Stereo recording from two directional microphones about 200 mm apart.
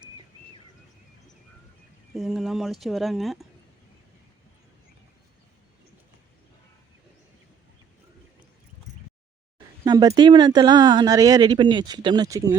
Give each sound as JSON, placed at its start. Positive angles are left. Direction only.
{"t": 2.1, "sound": "speech", "side_deg": 0}
{"t": 9.8, "sound": "speech", "side_deg": -20}